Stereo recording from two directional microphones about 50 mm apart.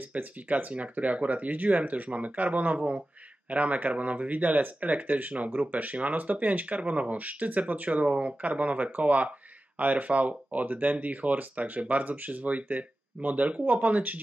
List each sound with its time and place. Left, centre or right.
0.1 s speech: right